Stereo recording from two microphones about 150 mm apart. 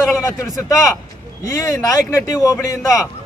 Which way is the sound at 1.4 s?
20° left (ahead or behind).